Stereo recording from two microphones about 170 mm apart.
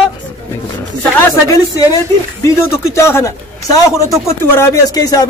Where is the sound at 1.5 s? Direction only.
20° left (ahead or behind).